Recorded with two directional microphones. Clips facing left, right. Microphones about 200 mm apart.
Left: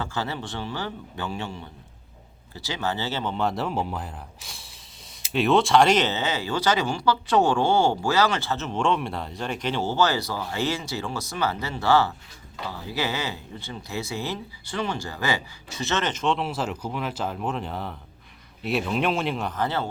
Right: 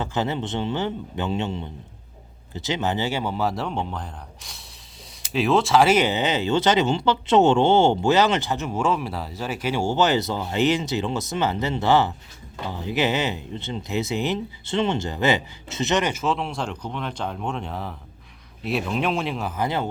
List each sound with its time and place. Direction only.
0.0 s speech: 20° right (ahead or behind)